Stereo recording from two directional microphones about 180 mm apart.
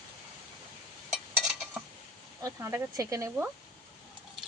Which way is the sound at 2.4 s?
15° right (ahead or behind).